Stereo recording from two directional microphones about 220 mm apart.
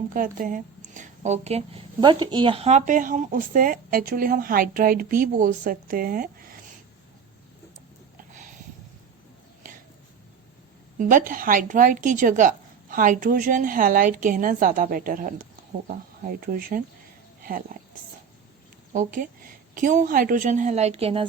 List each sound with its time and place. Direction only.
0.1 s a woman's voice: 40° right (ahead or behind)
10.9 s a woman's voice: 35° right (ahead or behind)
18.9 s a woman's voice: 35° right (ahead or behind)